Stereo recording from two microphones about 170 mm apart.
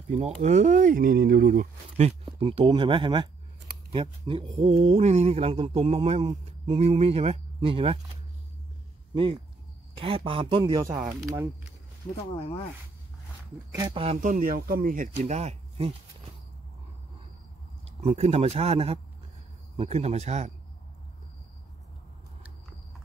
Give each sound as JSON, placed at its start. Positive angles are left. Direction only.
{"t": 0.4, "sound": "speech", "side_deg": -45}
{"t": 9.1, "sound": "speech", "side_deg": -30}
{"t": 12.3, "sound": "speech", "side_deg": 30}
{"t": 13.7, "sound": "speech", "side_deg": -25}
{"t": 14.2, "sound": "speech", "side_deg": -55}
{"t": 17.8, "sound": "speech", "side_deg": -35}